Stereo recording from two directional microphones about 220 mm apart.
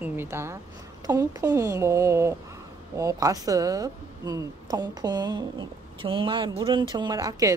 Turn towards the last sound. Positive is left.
turn(degrees=-15)  # may be behind; listen again after turning